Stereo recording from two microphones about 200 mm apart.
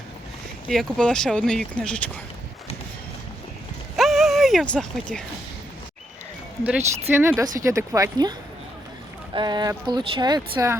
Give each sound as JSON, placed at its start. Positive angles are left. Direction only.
{"t": 0.7, "sound": "speech", "side_deg": 5}
{"t": 3.9, "sound": "a sound", "side_deg": 0}
{"t": 6.7, "sound": "speech", "side_deg": -10}